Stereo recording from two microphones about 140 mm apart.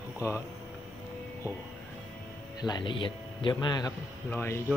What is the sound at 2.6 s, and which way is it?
Speech, 30° left (ahead or behind).